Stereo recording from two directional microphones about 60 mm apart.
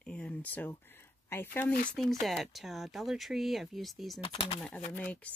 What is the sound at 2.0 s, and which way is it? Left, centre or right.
Speech, centre.